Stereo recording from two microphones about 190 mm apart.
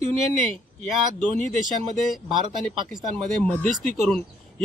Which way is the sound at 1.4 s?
Centre (ahead or behind).